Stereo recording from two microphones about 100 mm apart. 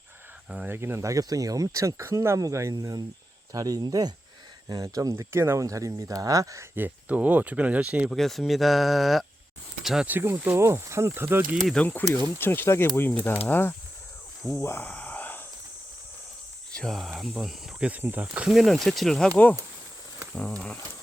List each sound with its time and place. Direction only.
0.7 s speech: 25° right (ahead or behind)
6.7 s speech: 15° right (ahead or behind)
8.1 s speech: centre (ahead or behind)
10.1 s speech: 25° right (ahead or behind)
11.6 s speech: 10° left (ahead or behind)
14.8 s a sound: 15° left (ahead or behind)
16.7 s speech: 5° left (ahead or behind)
17.8 s speech: 15° right (ahead or behind)
18.4 s speech: centre (ahead or behind)